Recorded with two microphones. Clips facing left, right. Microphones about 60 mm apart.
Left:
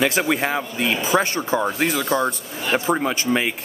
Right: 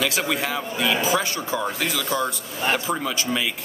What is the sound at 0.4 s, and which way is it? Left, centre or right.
Speech, left.